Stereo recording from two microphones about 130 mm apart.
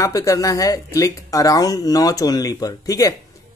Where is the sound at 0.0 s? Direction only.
25° left (ahead or behind).